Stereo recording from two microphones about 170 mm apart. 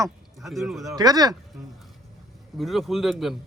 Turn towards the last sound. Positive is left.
turn(degrees=0)  # may be behind; listen again after turning